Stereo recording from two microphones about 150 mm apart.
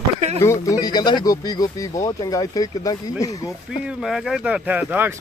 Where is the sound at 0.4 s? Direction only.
20° left (ahead or behind).